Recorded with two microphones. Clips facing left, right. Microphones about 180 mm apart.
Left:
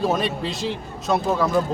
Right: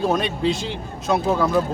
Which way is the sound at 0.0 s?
Centre (ahead or behind).